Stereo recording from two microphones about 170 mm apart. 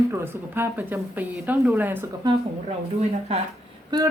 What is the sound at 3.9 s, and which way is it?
Speech, 20° right (ahead or behind).